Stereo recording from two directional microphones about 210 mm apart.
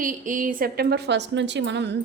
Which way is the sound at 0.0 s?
40° right (ahead or behind).